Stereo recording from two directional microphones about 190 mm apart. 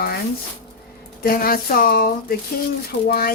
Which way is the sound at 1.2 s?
50° left (ahead or behind).